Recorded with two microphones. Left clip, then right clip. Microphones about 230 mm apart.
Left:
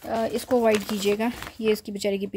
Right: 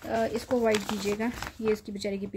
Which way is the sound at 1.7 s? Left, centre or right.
Left.